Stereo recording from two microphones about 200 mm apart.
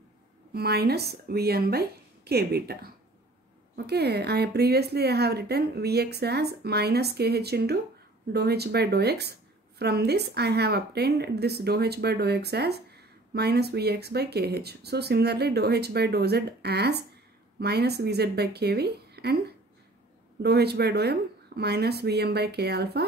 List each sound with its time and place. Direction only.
0.5 s a woman's voice: 50° right (ahead or behind)
20.4 s a woman's voice: 55° right (ahead or behind)